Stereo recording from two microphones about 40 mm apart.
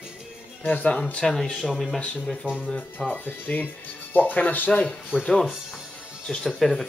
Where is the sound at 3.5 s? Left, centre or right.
Left.